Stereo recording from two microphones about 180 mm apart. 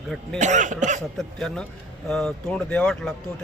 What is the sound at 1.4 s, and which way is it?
Speech, 5° left (ahead or behind).